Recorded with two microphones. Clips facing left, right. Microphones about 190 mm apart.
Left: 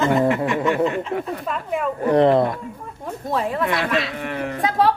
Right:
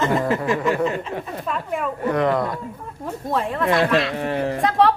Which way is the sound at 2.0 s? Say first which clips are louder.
Left 5 dB; 30° left (ahead or behind).